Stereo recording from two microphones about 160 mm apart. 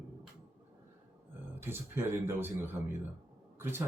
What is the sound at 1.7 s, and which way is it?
Speech, 15° right (ahead or behind).